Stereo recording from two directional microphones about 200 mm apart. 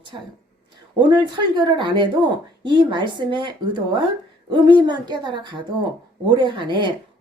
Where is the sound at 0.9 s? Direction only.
20° right (ahead or behind).